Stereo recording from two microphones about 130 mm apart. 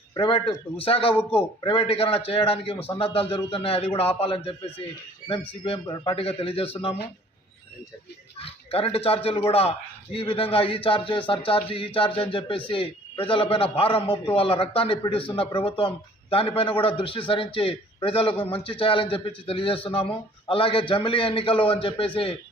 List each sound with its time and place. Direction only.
0.1 s a man's voice: 40° left (ahead or behind)
5.8 s a man's voice: 35° left (ahead or behind)
6.1 s a man's voice: 45° left (ahead or behind)
8.4 s a man's voice: 45° left (ahead or behind)